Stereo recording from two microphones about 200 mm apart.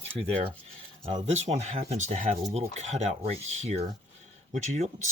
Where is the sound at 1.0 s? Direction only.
25° right (ahead or behind).